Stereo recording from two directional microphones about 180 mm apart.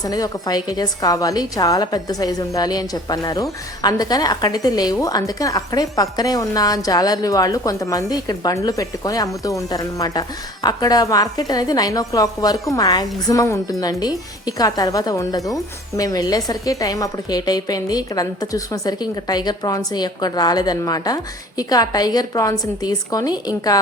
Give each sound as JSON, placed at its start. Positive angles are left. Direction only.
{"t": 0.0, "sound": "a woman's voice", "side_deg": 20}